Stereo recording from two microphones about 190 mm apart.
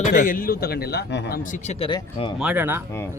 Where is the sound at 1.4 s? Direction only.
40° left (ahead or behind).